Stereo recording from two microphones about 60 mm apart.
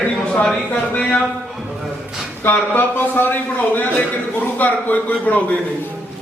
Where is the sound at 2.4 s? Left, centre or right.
Left.